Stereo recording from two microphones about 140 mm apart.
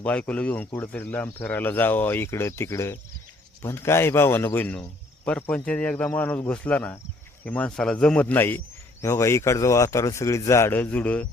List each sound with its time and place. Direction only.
0.0 s a man's voice: 10° left (ahead or behind)